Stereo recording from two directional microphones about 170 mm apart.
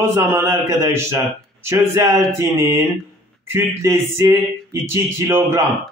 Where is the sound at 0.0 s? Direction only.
15° right (ahead or behind).